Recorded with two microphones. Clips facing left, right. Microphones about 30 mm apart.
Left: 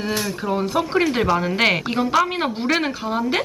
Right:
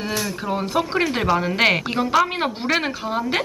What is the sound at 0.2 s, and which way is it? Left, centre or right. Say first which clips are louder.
Speech: left 2 dB; centre.